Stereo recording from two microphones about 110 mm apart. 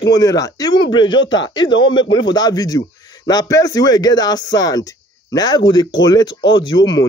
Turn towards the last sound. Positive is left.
turn(degrees=40)  # may be behind; listen again after turning